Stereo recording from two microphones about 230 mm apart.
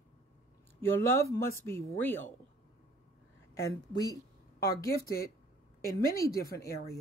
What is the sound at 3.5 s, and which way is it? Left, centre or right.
Speech, centre.